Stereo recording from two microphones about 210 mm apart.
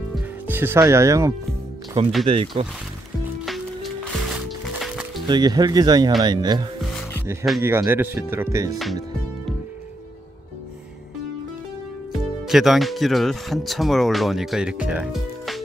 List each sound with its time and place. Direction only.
0.1 s music: 10° right (ahead or behind)
2.2 s speech: 25° right (ahead or behind)
3.4 s music: centre (ahead or behind)
5.2 s speech: 20° right (ahead or behind)
6.8 s music: centre (ahead or behind)
7.6 s speech: 10° right (ahead or behind)
12.4 s speech: centre (ahead or behind)